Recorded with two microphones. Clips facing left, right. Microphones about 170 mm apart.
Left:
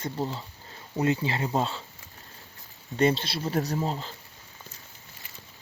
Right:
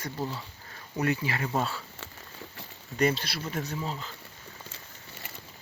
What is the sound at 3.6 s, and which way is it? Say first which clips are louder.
Speech: left 7 dB; 40° left (ahead or behind).